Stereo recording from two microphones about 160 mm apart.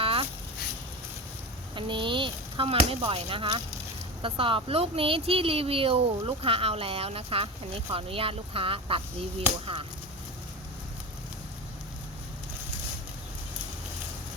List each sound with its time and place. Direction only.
0.0 s a sound: 35° right (ahead or behind)
1.7 s chop: 30° right (ahead or behind)
3.1 s speech: 35° right (ahead or behind)